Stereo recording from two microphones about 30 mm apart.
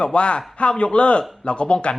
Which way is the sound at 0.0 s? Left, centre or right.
Left.